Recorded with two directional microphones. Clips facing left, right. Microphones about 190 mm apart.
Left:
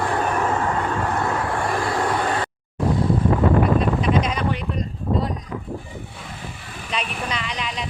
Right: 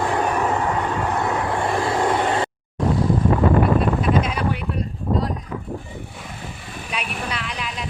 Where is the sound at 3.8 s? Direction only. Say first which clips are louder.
Right 1 dB; 5° right (ahead or behind).